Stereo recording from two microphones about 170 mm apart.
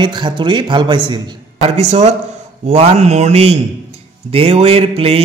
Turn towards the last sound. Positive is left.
turn(degrees=-35)  # may be behind; listen again after turning